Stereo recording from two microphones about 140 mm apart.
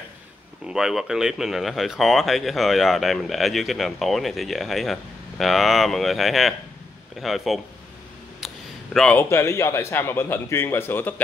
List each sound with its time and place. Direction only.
0.7 s speech: 5° right (ahead or behind)
8.4 s a sound: centre (ahead or behind)
8.9 s a man's voice: 5° left (ahead or behind)
9.2 s a man's voice: 20° left (ahead or behind)